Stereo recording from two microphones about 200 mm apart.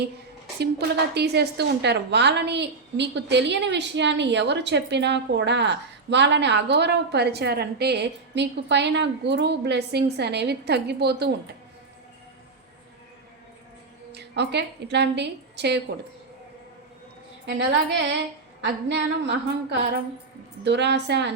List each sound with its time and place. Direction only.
0.6 s a woman's voice: 55° right (ahead or behind)
14.1 s a woman's voice: 55° right (ahead or behind)
18.6 s a woman's voice: 60° right (ahead or behind)